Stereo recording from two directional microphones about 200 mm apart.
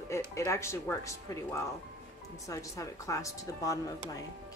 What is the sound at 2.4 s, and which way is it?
A woman's voice, 15° left (ahead or behind).